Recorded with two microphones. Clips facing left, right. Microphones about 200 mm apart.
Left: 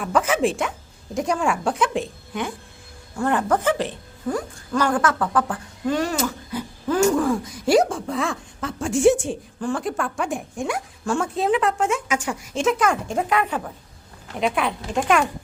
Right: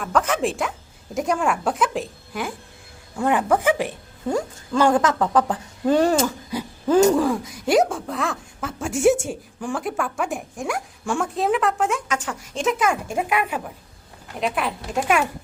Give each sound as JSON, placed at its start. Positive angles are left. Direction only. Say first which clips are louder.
{"t": 0.0, "sound": "a woman's voice", "louder": "left 1 dB", "side_deg": 5}
{"t": 3.2, "sound": "speech", "louder": "right 1 dB", "side_deg": -15}
{"t": 4.3, "sound": "speech", "louder": "right 2 dB", "side_deg": -25}
{"t": 5.8, "sound": "speech", "louder": "right 5 dB", "side_deg": -35}
{"t": 6.5, "sound": "a sound", "louder": "right 2 dB", "side_deg": -15}
{"t": 7.2, "sound": "a woman's voice", "louder": "even", "side_deg": 0}
{"t": 12.5, "sound": "a woman's voice", "louder": "left 1 dB", "side_deg": -5}